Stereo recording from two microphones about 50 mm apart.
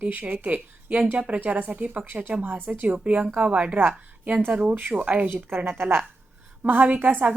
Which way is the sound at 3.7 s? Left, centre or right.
Right.